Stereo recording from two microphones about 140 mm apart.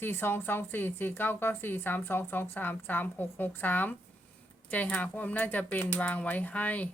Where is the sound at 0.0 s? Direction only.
15° left (ahead or behind).